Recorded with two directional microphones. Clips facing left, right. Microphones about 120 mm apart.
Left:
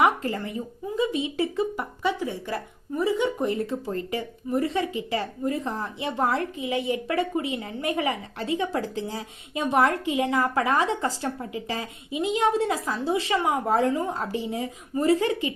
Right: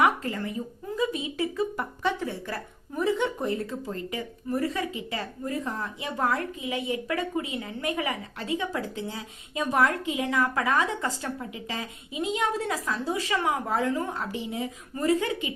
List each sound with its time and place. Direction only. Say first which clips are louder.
0.0 s a sound: left 2 dB; 25° left (ahead or behind)
0.9 s a woman's voice: left 3 dB; 25° left (ahead or behind)
1.7 s a woman's voice: left 1 dB; 10° left (ahead or behind)
3.4 s a woman's voice: left 3 dB; 25° left (ahead or behind)